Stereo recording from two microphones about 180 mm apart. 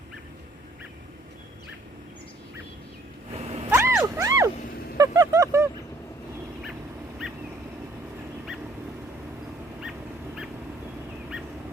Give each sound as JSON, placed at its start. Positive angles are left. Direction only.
{"t": 3.3, "sound": "cat", "side_deg": -35}
{"t": 3.7, "sound": "music", "side_deg": -15}
{"t": 4.9, "sound": "a sound", "side_deg": -20}